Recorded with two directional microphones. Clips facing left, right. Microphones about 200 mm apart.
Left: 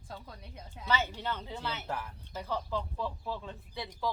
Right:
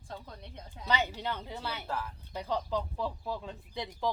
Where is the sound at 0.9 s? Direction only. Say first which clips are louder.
Right 1 dB; 15° right (ahead or behind).